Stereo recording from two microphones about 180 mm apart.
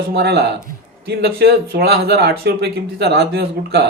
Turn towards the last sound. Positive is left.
turn(degrees=-65)  # may be behind; listen again after turning